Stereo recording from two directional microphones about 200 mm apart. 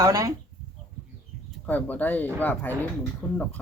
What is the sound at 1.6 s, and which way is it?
Speech, 10° left (ahead or behind).